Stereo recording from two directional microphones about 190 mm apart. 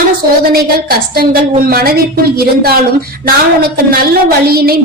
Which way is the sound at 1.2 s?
50° right (ahead or behind).